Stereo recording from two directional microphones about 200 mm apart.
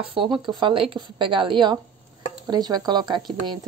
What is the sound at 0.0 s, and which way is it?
Speech, 25° right (ahead or behind).